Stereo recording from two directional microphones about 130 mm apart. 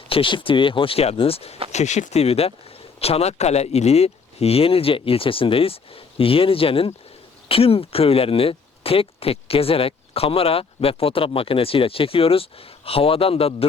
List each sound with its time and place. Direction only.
0.1 s speech: 40° left (ahead or behind)
1.7 s speech: 65° left (ahead or behind); by 13.7 s 50° left (ahead or behind)